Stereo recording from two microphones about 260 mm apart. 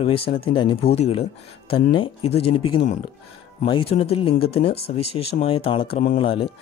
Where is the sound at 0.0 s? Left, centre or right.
Left.